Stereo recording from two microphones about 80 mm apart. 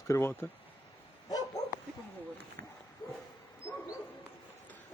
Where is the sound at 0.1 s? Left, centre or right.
Left.